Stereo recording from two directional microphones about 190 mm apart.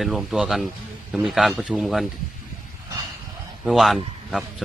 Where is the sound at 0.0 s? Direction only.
Centre (ahead or behind).